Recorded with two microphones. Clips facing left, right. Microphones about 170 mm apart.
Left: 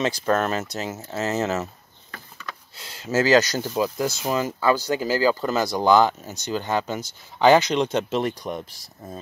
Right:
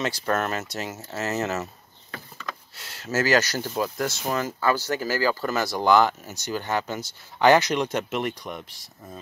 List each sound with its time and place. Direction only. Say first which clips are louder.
0.3 s speech: left 3 dB; 25° left (ahead or behind)
2.8 s speech: left 4 dB; 15° left (ahead or behind); by 9.2 s 35° left (ahead or behind)